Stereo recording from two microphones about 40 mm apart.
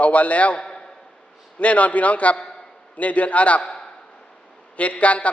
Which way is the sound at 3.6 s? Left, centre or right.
Left.